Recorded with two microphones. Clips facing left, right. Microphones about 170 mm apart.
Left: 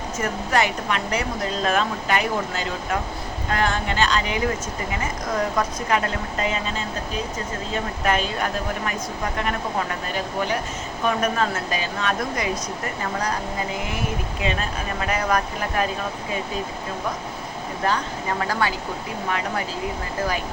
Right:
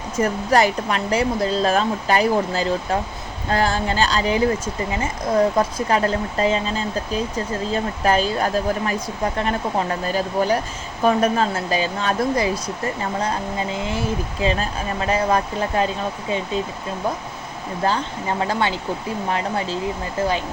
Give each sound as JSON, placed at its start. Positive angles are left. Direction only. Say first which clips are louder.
{"t": 0.2, "sound": "speech", "louder": "right 5 dB", "side_deg": -35}
{"t": 17.8, "sound": "speech", "louder": "right 2 dB", "side_deg": -30}